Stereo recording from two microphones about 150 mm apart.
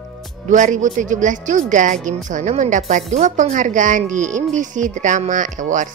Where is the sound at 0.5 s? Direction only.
55° right (ahead or behind).